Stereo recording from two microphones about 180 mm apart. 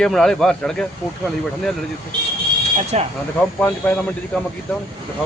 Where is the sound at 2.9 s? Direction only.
40° right (ahead or behind).